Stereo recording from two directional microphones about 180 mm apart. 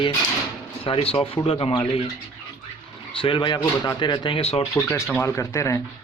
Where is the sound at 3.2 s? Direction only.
25° left (ahead or behind).